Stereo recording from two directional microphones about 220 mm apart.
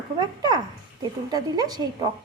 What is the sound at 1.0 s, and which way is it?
Speech, 20° right (ahead or behind).